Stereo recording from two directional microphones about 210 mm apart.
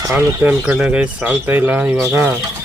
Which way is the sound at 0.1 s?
5° right (ahead or behind).